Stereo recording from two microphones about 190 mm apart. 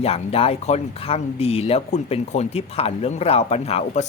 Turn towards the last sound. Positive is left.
turn(degrees=35)  # may be behind; listen again after turning